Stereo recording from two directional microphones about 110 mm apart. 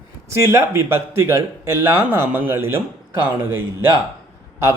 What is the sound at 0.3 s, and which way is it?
Speech, 25° right (ahead or behind).